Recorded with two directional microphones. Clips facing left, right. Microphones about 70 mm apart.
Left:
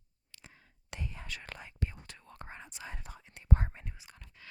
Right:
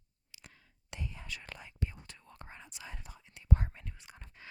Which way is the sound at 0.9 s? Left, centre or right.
Left.